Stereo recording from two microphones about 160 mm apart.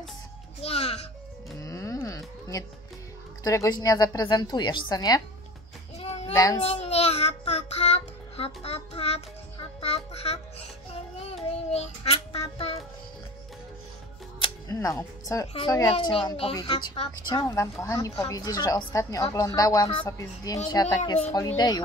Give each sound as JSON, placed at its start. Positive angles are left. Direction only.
{"t": 0.6, "sound": "music", "side_deg": 40}
{"t": 1.6, "sound": "music", "side_deg": 20}
{"t": 3.4, "sound": "a woman's voice", "side_deg": 25}
{"t": 5.9, "sound": "a sound", "side_deg": 40}
{"t": 6.3, "sound": "a woman's voice", "side_deg": 20}
{"t": 6.6, "sound": "child singing", "side_deg": 40}
{"t": 14.4, "sound": "music", "side_deg": 20}
{"t": 15.5, "sound": "a woman's voice", "side_deg": 25}
{"t": 16.1, "sound": "speech", "side_deg": 35}
{"t": 17.8, "sound": "a woman's voice", "side_deg": 20}